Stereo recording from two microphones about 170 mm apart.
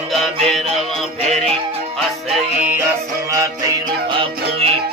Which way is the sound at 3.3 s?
20° right (ahead or behind).